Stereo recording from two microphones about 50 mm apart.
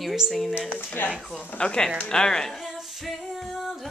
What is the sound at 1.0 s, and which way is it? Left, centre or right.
Speech, left.